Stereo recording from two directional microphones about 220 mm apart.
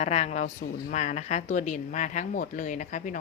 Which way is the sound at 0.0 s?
30° left (ahead or behind).